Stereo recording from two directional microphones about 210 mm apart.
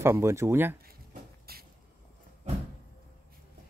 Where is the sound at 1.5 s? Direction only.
45° right (ahead or behind).